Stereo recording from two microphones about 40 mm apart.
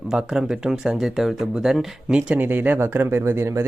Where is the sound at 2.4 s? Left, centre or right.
Right.